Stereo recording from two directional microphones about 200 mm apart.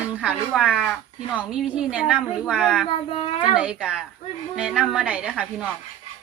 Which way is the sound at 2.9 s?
25° left (ahead or behind).